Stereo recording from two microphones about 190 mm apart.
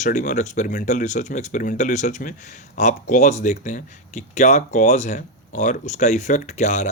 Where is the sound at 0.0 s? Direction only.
40° left (ahead or behind).